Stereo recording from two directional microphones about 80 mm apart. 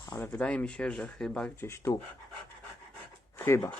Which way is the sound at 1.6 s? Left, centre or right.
Left.